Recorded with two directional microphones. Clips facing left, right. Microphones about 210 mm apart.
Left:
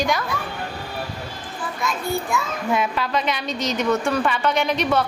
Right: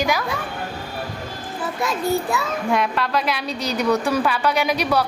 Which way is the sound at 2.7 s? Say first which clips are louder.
Even; centre (ahead or behind).